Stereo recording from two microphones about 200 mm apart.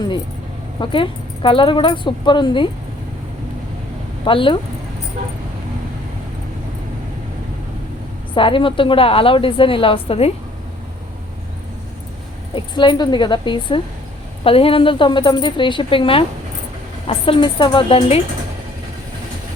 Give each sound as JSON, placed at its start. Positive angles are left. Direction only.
{"t": 0.8, "sound": "a woman's voice", "side_deg": 25}
{"t": 4.3, "sound": "a woman's voice", "side_deg": 25}
{"t": 8.4, "sound": "a woman's voice", "side_deg": 25}
{"t": 12.5, "sound": "a woman's voice", "side_deg": 25}